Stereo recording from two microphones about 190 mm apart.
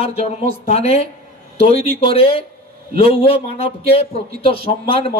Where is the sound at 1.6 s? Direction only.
30° left (ahead or behind).